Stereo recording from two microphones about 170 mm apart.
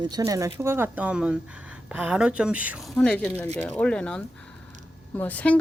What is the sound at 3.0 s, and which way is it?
Speech, 5° left (ahead or behind).